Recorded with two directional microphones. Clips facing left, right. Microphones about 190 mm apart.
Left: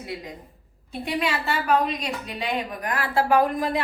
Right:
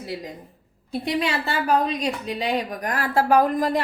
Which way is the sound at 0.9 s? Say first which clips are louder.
Right 2 dB; 35° right (ahead or behind).